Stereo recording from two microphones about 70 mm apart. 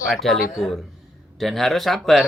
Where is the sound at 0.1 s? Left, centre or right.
Centre.